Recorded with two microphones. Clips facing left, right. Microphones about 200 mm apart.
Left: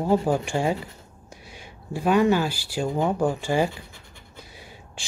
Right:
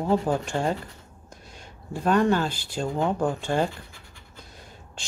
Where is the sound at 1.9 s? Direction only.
5° left (ahead or behind).